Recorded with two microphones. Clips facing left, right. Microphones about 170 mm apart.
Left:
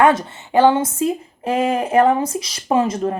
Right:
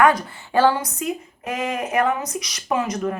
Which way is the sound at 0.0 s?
25° left (ahead or behind).